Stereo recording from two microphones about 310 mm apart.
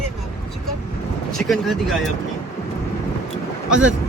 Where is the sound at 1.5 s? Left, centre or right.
Centre.